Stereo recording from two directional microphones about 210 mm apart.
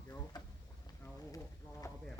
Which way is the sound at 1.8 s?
15° left (ahead or behind).